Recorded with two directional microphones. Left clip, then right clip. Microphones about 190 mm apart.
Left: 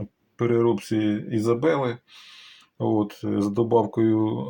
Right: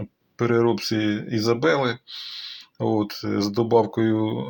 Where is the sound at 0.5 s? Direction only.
20° right (ahead or behind).